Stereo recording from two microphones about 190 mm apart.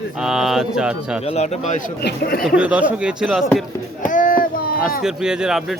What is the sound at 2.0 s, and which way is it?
Speech, 55° left (ahead or behind).